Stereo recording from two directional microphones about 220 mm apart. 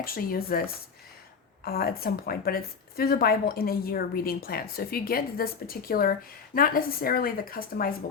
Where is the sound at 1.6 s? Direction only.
45° left (ahead or behind).